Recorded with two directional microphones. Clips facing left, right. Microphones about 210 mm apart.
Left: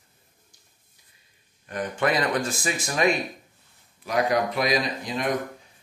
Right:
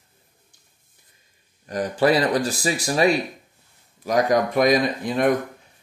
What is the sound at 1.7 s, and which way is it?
Speech, 35° right (ahead or behind).